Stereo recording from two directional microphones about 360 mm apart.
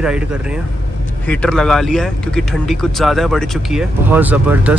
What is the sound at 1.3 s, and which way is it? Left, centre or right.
Speech, centre.